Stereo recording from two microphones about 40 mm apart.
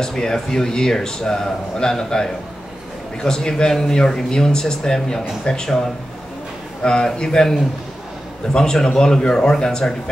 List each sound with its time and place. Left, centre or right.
0.0 s speech: centre